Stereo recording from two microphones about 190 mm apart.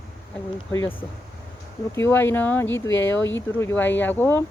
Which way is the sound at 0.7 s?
15° left (ahead or behind).